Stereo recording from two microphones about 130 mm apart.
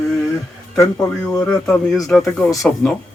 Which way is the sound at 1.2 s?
25° left (ahead or behind).